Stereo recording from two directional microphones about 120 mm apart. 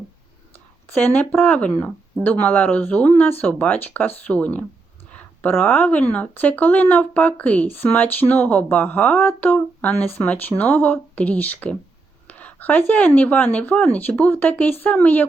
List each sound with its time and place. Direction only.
0.9 s speech: 15° left (ahead or behind)